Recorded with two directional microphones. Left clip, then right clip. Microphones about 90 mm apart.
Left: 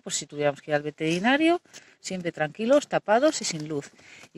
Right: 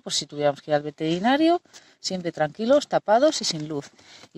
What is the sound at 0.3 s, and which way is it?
Speech, 20° right (ahead or behind).